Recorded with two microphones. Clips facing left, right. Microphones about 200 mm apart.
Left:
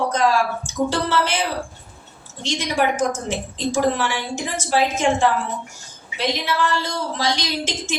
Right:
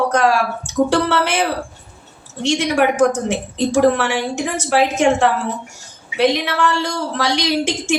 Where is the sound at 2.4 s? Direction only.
70° right (ahead or behind).